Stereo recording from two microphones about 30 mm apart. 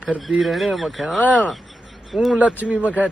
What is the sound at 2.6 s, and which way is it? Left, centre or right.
Speech, right.